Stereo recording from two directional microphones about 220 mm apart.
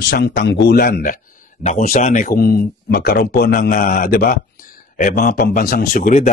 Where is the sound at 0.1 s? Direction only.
50° left (ahead or behind).